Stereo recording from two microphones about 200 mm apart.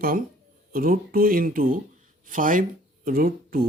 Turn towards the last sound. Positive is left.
turn(degrees=-45)  # may be behind; listen again after turning